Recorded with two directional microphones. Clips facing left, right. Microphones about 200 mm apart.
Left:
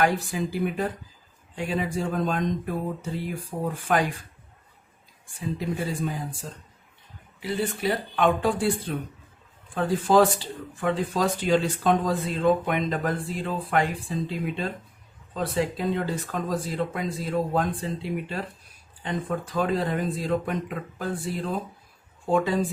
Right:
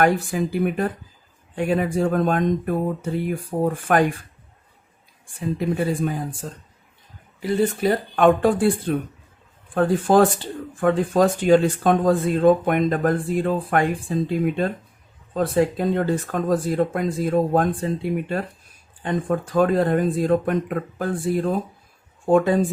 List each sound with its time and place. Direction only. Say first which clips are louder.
0.0 s speech: right 5 dB; 55° right (ahead or behind)
5.5 s speech: right 7 dB; 55° right (ahead or behind)
7.3 s speech: right 7 dB; 45° right (ahead or behind)